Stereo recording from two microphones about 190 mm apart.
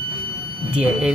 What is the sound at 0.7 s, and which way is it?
Speech, 5° right (ahead or behind).